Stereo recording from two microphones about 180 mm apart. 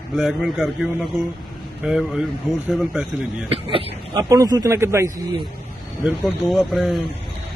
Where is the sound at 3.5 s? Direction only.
30° right (ahead or behind).